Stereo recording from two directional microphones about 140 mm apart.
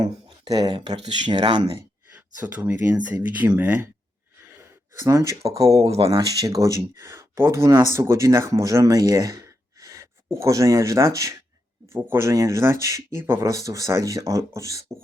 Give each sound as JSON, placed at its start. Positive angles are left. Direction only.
{"t": 0.5, "sound": "speech", "side_deg": -30}
{"t": 2.6, "sound": "speech", "side_deg": -25}
{"t": 3.1, "sound": "speech", "side_deg": -15}
{"t": 4.4, "sound": "gasp", "side_deg": -20}
{"t": 5.8, "sound": "speech", "side_deg": -45}
{"t": 6.1, "sound": "speech", "side_deg": -25}